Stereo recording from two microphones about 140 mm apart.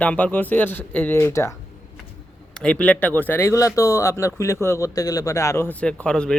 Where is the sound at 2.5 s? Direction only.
10° left (ahead or behind).